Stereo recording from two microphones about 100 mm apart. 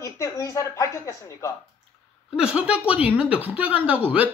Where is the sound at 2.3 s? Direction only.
10° right (ahead or behind).